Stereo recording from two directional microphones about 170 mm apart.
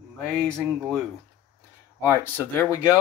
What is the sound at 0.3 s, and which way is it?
Speech, 5° left (ahead or behind).